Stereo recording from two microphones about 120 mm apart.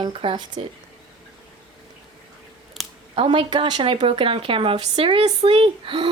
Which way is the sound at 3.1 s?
45° right (ahead or behind).